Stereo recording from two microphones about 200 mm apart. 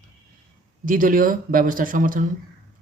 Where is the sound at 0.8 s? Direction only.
45° right (ahead or behind).